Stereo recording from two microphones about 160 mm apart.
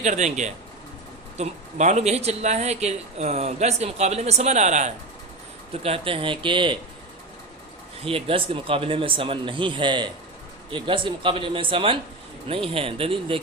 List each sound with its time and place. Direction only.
0.0 s speech: 45° right (ahead or behind); by 6.7 s 30° right (ahead or behind)
8.0 s speech: 35° right (ahead or behind)